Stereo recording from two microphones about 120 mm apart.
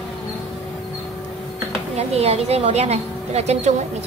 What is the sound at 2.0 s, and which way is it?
A woman's voice, 60° right (ahead or behind).